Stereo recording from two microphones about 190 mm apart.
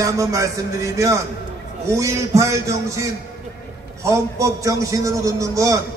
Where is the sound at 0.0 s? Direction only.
15° right (ahead or behind).